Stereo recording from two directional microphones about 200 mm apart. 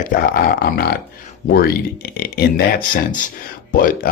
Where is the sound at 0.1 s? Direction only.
45° left (ahead or behind).